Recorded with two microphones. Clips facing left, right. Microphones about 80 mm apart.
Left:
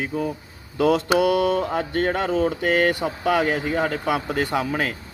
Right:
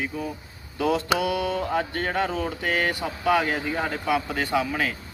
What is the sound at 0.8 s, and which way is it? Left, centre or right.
Mantra, left.